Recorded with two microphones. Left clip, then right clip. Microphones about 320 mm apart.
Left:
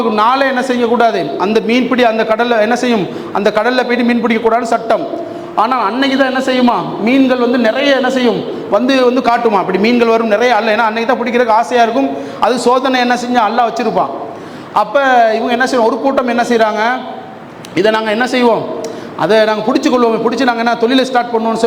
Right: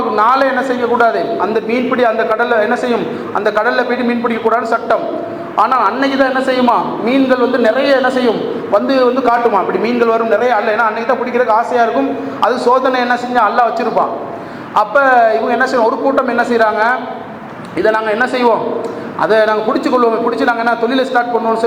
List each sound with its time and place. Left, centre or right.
0.2 s a man's voice: left
8.9 s a man's voice: left
19.6 s a man's voice: left